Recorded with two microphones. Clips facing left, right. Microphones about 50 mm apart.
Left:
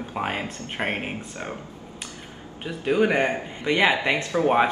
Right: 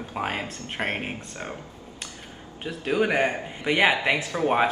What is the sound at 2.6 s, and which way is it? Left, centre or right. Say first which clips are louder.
Speech: left 3 dB; centre.